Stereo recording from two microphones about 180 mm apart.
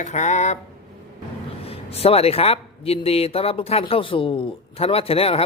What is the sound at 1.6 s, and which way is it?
Speech, 35° left (ahead or behind).